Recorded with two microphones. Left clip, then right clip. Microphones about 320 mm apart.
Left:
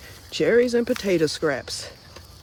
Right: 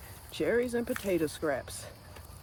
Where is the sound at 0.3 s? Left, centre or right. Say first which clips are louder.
Left 11 dB; left.